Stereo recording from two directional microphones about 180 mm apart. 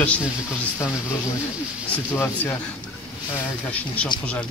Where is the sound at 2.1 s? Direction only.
15° left (ahead or behind).